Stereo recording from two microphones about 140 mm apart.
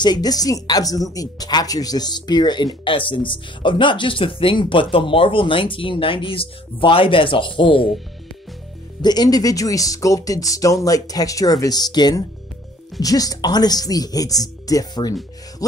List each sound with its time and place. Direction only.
0.0 s speech: 30° left (ahead or behind)
9.0 s speech: 30° left (ahead or behind)